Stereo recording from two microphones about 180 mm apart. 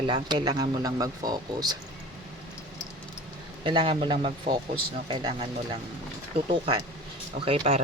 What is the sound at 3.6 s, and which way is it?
Speech, 30° right (ahead or behind).